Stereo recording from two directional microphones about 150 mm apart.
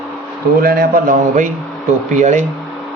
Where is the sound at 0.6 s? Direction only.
80° right; by 2.4 s 55° right (ahead or behind).